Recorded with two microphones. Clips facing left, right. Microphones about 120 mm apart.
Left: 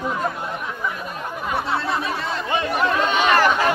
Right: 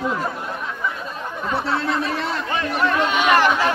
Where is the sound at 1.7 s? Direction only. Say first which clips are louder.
Right 3 dB; 15° left (ahead or behind).